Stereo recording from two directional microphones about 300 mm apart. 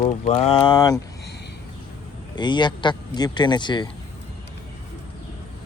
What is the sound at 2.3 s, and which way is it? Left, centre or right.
Speech, centre.